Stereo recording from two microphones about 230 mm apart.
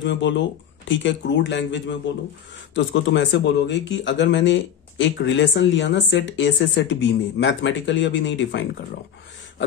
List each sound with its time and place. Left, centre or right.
0.0 s speech: left